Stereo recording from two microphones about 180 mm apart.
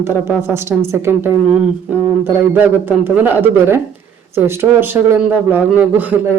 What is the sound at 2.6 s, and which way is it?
A man's voice, 10° right (ahead or behind).